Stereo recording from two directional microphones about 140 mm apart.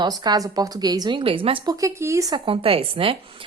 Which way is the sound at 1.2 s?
40° right (ahead or behind).